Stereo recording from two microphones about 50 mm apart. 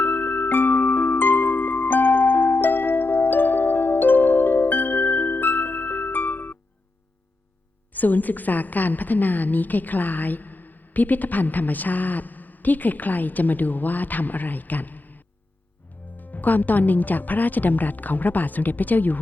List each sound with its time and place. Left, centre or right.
0.0 s music: left
7.9 s a woman's voice: left